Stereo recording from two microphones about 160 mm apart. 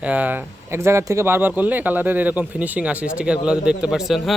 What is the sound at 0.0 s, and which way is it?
Speech, 10° right (ahead or behind).